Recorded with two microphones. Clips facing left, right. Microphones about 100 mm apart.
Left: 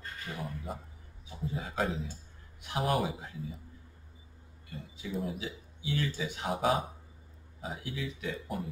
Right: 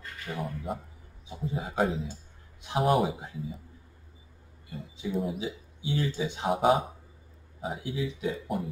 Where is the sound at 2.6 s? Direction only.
25° right (ahead or behind).